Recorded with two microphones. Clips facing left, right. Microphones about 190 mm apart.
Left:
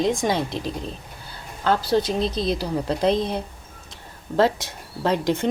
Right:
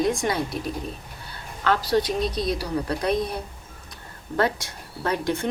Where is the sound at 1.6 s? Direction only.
30° left (ahead or behind).